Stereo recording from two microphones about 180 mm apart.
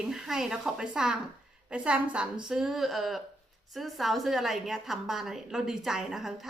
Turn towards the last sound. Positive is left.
turn(degrees=0)  # may be behind; listen again after turning